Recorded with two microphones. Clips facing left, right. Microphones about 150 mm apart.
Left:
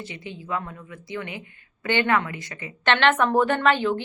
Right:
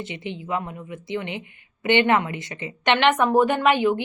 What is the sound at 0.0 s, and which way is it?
A woman's voice, 20° right (ahead or behind).